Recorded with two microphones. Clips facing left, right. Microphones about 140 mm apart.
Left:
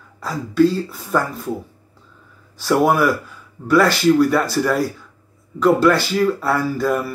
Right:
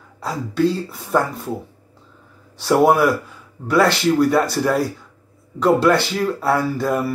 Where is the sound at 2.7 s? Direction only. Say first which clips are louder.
Right 1 dB; 25° right (ahead or behind).